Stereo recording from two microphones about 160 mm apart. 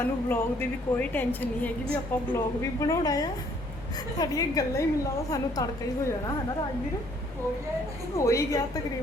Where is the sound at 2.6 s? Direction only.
20° left (ahead or behind).